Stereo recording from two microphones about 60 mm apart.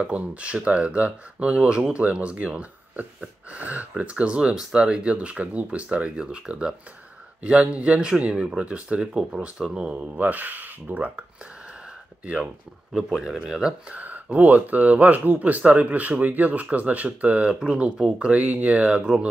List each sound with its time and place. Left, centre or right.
0.0 s speech: right
12.9 s speech: centre
14.0 s speech: right